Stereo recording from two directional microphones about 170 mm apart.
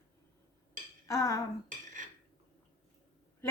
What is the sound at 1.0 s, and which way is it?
Speech, 20° left (ahead or behind).